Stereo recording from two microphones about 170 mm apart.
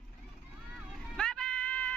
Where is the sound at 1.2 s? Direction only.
5° left (ahead or behind).